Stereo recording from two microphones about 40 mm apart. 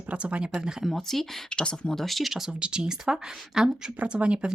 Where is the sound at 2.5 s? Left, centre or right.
Right.